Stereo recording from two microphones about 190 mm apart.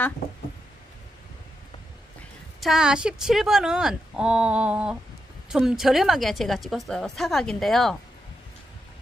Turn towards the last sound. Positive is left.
turn(degrees=0)  # may be behind; listen again after turning